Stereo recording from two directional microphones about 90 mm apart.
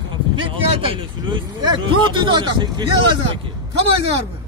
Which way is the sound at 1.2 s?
55° right (ahead or behind).